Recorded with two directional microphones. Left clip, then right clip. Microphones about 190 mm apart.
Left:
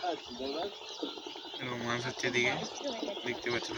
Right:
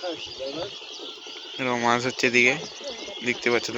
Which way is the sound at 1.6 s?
30° right (ahead or behind).